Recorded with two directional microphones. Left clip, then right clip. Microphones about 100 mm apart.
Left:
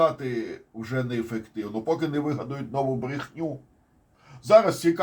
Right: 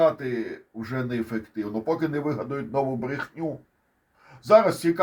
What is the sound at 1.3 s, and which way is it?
Speech, 45° right (ahead or behind).